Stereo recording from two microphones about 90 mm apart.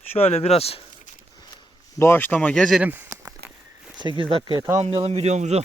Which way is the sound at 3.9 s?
65° right (ahead or behind).